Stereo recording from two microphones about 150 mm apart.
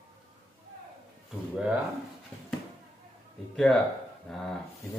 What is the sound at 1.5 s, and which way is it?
Speech, 5° right (ahead or behind).